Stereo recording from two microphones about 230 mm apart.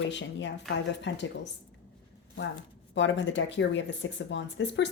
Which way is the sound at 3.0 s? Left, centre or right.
Left.